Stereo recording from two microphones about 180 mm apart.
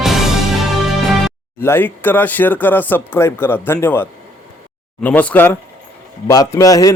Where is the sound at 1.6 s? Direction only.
10° left (ahead or behind).